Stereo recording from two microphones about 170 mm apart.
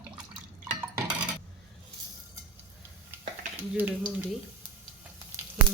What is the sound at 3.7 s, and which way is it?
Speech, 10° right (ahead or behind).